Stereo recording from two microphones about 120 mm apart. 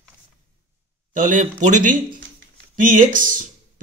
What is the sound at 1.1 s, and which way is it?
Speech, 90° right.